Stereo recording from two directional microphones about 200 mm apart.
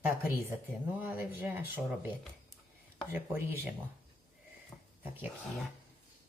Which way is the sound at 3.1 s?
10° right (ahead or behind).